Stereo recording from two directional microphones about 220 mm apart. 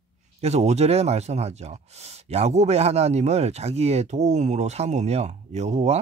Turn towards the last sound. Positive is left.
turn(degrees=-30)  # may be behind; listen again after turning